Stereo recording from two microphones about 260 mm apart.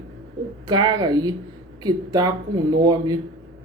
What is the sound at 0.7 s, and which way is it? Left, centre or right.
A woman's voice, centre.